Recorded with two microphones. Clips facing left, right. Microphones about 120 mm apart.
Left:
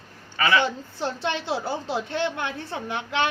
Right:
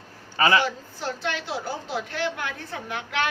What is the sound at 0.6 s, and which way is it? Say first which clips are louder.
A woman's voice: left 2 dB; 25° left (ahead or behind).